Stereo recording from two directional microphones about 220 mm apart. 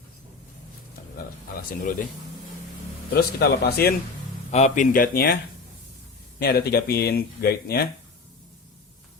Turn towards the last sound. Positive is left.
turn(degrees=45)  # may be behind; listen again after turning